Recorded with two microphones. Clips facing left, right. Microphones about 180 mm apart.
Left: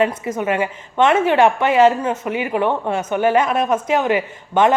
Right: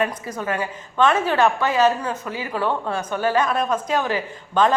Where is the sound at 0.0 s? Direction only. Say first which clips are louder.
Left 6 dB; 25° left (ahead or behind).